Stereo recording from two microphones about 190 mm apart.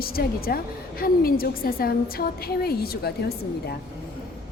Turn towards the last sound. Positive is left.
turn(degrees=55)  # may be behind; listen again after turning